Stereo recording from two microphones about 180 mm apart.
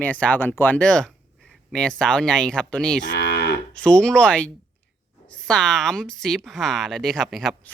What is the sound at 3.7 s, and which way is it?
Speech, 5° left (ahead or behind).